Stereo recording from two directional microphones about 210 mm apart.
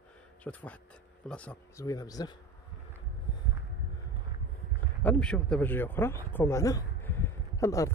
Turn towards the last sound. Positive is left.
turn(degrees=15)  # may be behind; listen again after turning